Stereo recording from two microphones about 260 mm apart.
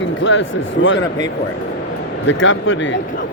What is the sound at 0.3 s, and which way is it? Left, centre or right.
Speech, left.